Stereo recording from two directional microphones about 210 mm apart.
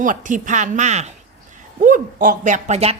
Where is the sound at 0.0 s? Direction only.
40° right (ahead or behind).